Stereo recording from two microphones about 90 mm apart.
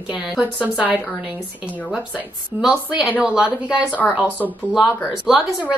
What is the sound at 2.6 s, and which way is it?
A woman's voice, 5° right (ahead or behind).